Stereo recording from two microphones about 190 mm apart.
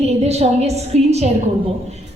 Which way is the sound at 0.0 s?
35° right (ahead or behind).